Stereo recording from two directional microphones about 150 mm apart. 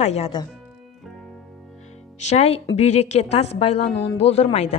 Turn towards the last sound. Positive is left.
turn(degrees=45)  # may be behind; listen again after turning